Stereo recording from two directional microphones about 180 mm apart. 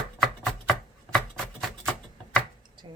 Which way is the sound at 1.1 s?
Centre (ahead or behind).